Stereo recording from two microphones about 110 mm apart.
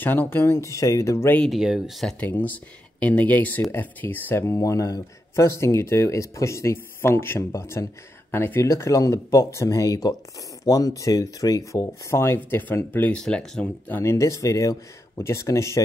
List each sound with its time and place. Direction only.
0.0 s speech: 20° left (ahead or behind)
1.5 s speech: 5° right (ahead or behind)
2.1 s speech: 15° left (ahead or behind)